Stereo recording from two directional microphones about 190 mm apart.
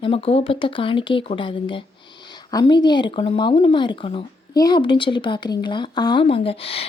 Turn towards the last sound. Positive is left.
turn(degrees=30)  # may be behind; listen again after turning